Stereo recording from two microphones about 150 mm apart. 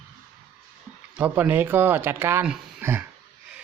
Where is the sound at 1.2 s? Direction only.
10° right (ahead or behind).